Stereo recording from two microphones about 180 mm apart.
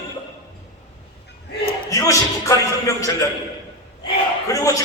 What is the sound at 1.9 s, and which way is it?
A man's voice, 20° left (ahead or behind).